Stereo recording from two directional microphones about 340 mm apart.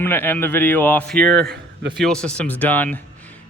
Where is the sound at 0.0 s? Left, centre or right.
Centre.